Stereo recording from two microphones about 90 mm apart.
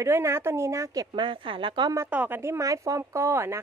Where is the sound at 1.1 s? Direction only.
65° right (ahead or behind).